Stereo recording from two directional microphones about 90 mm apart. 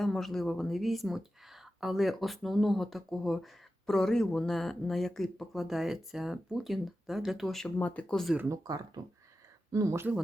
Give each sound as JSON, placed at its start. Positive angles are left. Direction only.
{"t": 0.0, "sound": "speech", "side_deg": 5}
{"t": 7.8, "sound": "speech", "side_deg": 15}
{"t": 8.4, "sound": "speech", "side_deg": -45}
{"t": 9.7, "sound": "speech", "side_deg": -35}